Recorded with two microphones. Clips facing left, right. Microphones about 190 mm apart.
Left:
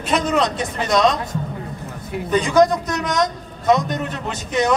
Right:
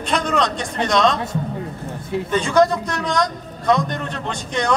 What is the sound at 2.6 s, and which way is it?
A man's voice, 20° left (ahead or behind).